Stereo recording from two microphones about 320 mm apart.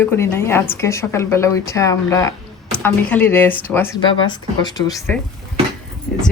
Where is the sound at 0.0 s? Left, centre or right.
Centre.